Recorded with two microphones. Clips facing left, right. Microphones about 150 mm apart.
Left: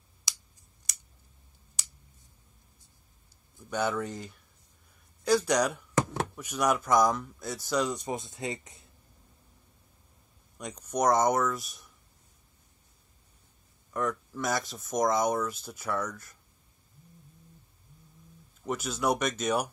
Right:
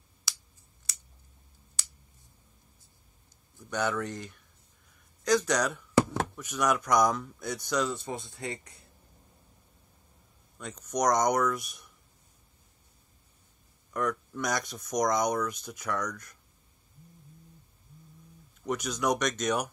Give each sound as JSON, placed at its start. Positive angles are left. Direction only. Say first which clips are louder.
{"t": 0.3, "sound": "finger snapping", "louder": "right 1 dB", "side_deg": 20}
{"t": 3.7, "sound": "speech", "louder": "left 1 dB", "side_deg": 10}
{"t": 10.6, "sound": "speech", "louder": "left 1 dB", "side_deg": 10}
{"t": 13.9, "sound": "speech", "louder": "even", "side_deg": 0}
{"t": 18.7, "sound": "speech", "louder": "even", "side_deg": 5}